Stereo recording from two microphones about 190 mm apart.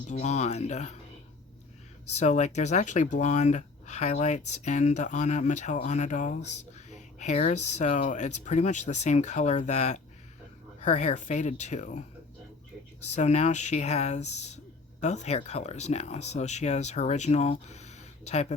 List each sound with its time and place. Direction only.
0.1 s speech: 35° left (ahead or behind)
2.1 s speech: 35° left (ahead or behind)
13.1 s speech: 35° left (ahead or behind)